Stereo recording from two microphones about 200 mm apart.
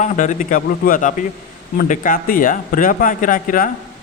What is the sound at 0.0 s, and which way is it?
A man's voice, 40° left (ahead or behind).